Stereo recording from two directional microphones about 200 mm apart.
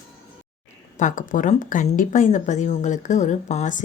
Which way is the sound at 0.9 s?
40° left (ahead or behind).